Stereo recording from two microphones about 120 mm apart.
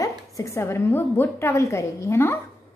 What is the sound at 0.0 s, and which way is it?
A woman's voice, 25° left (ahead or behind).